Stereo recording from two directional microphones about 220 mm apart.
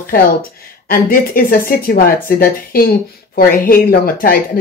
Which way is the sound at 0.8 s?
40° left (ahead or behind).